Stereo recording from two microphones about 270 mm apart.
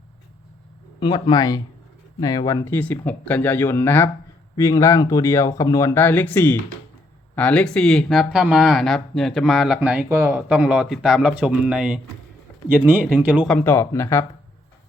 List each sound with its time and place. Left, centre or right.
0.9 s speech: centre